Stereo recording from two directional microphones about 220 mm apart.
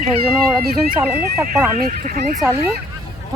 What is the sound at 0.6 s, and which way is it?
Speech, 45° right (ahead or behind).